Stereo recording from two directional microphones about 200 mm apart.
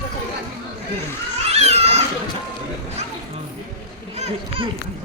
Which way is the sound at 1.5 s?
30° right (ahead or behind).